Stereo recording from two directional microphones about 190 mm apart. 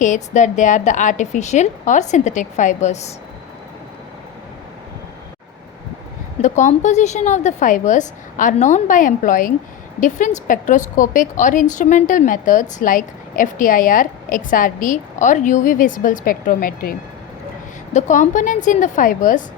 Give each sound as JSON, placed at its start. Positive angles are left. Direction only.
{"t": 0.0, "sound": "a woman's voice", "side_deg": 40}
{"t": 6.4, "sound": "a woman's voice", "side_deg": 40}
{"t": 17.9, "sound": "a woman's voice", "side_deg": 40}